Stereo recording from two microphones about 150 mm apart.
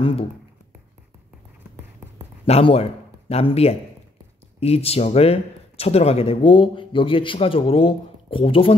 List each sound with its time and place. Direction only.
0.0 s speech: 40° left (ahead or behind)
2.4 s speech: 40° left (ahead or behind)